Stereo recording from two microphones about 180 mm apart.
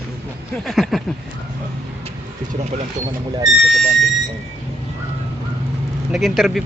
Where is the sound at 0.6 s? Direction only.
Centre (ahead or behind).